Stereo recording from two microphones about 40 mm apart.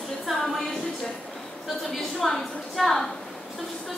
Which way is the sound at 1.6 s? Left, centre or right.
Centre.